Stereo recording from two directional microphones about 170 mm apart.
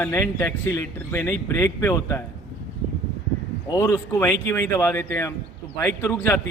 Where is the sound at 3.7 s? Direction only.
15° left (ahead or behind).